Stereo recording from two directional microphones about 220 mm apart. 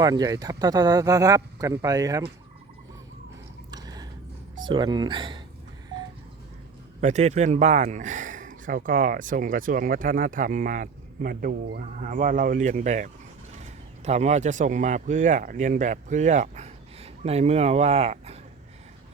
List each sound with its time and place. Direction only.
0.0 s speech: 15° right (ahead or behind)
3.7 s a sound: 15° right (ahead or behind)
4.5 s speech: 20° right (ahead or behind)
7.0 s speech: 30° right (ahead or behind)